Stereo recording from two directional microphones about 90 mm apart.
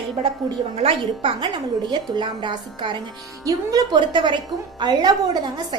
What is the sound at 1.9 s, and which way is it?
A woman's voice, 60° right (ahead or behind).